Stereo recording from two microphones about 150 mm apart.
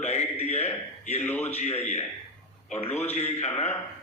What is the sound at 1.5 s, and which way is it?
Speech, 45° left (ahead or behind).